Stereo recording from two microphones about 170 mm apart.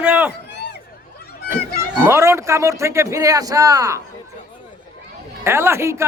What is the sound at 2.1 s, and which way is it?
A man's voice, 15° right (ahead or behind).